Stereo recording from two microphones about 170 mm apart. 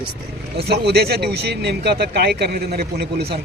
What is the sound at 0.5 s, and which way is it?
Speech, 75° right (ahead or behind).